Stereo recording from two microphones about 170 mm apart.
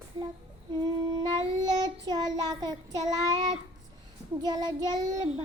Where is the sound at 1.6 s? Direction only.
25° right (ahead or behind).